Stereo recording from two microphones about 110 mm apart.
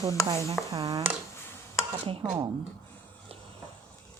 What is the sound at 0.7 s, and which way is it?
Speech, 60° right (ahead or behind).